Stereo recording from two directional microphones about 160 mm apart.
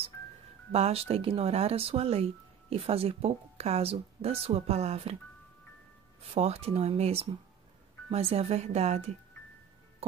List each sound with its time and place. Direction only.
0.7 s speech: 40° right (ahead or behind)
6.2 s speech: 40° right (ahead or behind)